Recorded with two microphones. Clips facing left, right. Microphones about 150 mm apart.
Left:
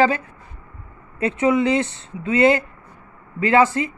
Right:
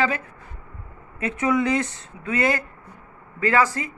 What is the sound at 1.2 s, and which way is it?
Speech, 25° left (ahead or behind).